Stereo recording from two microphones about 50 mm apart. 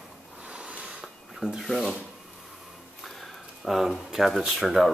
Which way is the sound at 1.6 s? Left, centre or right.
Centre.